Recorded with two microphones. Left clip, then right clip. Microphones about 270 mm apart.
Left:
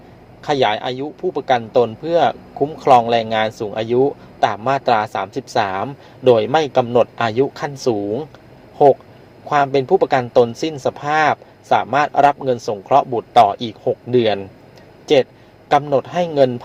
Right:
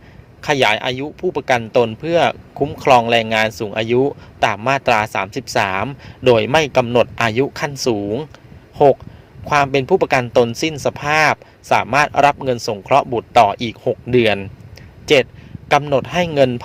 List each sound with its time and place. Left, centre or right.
0.4 s a man's voice: right
9.5 s a man's voice: right